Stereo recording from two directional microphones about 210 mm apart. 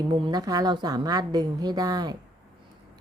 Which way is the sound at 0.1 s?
20° right (ahead or behind).